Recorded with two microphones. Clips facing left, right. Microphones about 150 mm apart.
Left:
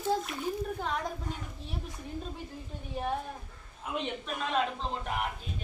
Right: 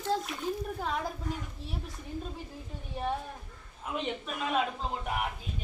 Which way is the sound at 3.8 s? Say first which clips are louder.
Right 1 dB; centre (ahead or behind).